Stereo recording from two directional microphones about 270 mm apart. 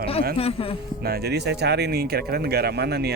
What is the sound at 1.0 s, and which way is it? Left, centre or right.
Speech, right.